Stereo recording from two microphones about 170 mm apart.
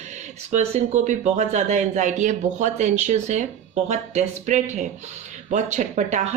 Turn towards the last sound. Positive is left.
turn(degrees=-45)  # may be behind; listen again after turning